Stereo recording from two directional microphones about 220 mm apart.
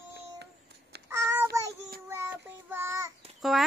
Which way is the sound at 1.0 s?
15° right (ahead or behind).